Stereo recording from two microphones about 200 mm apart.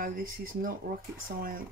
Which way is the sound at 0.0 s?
45° right (ahead or behind).